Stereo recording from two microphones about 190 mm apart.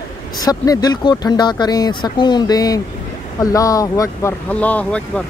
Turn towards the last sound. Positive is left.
turn(degrees=5)  # may be behind; listen again after turning